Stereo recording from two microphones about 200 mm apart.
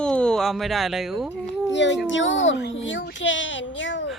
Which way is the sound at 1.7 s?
65° left (ahead or behind).